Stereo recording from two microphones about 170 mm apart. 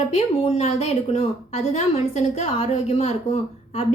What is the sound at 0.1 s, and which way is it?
A woman's voice, 40° left (ahead or behind).